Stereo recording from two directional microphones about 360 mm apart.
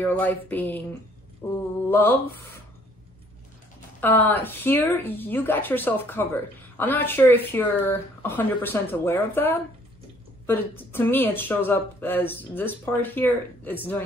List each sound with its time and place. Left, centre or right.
0.0 s speech: centre
4.0 s speech: centre